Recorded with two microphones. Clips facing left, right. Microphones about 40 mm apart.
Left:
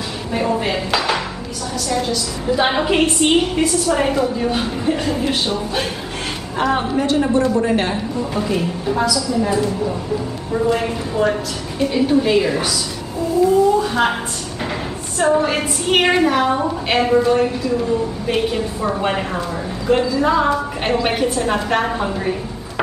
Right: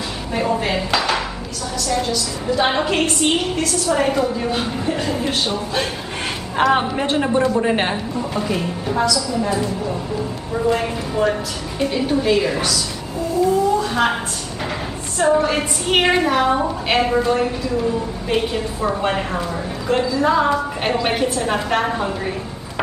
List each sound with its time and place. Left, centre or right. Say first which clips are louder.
0.3 s dishes: left 1 dB; centre
1.8 s a woman's voice: even; centre
6.5 s a woman's voice: right 1 dB; right
7.9 s a woman's voice: left 1 dB; centre
13.7 s a woman's voice: left 1 dB; centre